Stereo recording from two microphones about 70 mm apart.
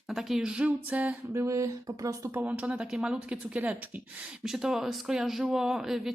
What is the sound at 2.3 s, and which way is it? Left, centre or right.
A woman's voice, right.